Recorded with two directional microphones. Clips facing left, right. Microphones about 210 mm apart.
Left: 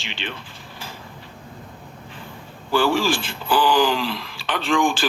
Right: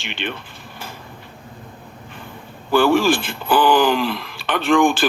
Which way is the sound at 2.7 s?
55° right (ahead or behind).